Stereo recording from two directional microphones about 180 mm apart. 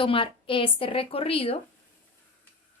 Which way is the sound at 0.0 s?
30° left (ahead or behind).